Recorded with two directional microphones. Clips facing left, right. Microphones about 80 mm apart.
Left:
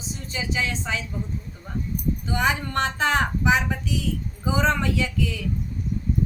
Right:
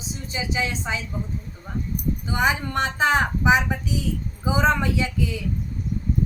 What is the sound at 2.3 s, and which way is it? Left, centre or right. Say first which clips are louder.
A woman's voice: right 2 dB; centre.